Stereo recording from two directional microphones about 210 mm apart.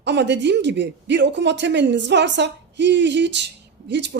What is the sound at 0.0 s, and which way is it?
A woman's voice, 55° right (ahead or behind).